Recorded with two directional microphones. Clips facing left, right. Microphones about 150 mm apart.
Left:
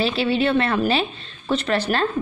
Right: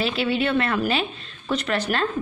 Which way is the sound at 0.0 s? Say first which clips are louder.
Left 3 dB; 30° left (ahead or behind).